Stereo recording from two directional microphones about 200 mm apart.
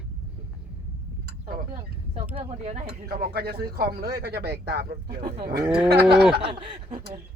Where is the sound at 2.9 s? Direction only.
50° right (ahead or behind).